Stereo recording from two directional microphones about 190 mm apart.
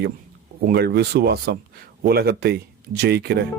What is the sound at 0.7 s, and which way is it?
Speech, 55° right (ahead or behind).